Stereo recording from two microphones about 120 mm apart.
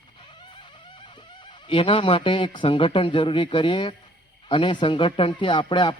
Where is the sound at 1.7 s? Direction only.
45° left (ahead or behind).